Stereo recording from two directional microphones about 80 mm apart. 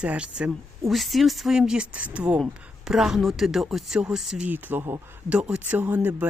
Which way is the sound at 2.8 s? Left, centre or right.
Centre.